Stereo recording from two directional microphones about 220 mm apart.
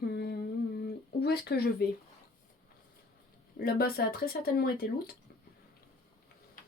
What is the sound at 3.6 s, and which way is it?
Speech, 45° left (ahead or behind).